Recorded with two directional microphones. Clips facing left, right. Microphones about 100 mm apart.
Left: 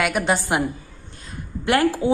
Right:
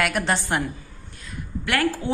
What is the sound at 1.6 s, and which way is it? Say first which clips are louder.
Speech: left 5 dB; 25° left (ahead or behind).